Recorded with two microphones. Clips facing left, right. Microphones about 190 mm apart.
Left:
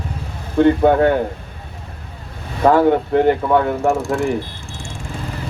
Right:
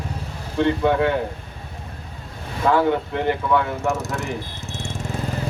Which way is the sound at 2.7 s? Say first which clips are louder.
Left 6 dB; 50° left (ahead or behind).